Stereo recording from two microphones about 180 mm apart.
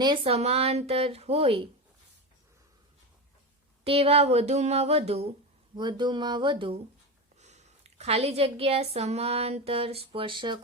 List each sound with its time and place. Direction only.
0.0 s speech: 25° right (ahead or behind)
3.8 s speech: 35° right (ahead or behind)
7.3 s a woman's voice: 40° right (ahead or behind)